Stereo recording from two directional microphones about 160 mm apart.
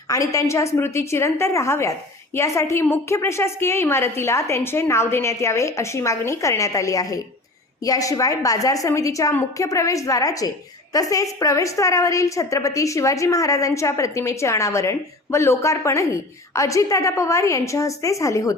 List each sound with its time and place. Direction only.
0.1 s a woman's voice: 20° left (ahead or behind)